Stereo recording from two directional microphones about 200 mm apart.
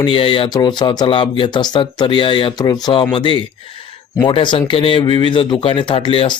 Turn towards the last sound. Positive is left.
turn(degrees=25)  # may be behind; listen again after turning